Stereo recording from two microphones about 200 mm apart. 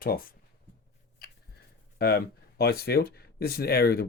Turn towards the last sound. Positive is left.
turn(degrees=50)  # may be behind; listen again after turning